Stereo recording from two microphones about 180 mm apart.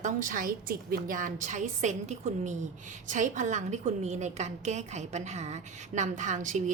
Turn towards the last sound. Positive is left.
turn(degrees=-45)  # may be behind; listen again after turning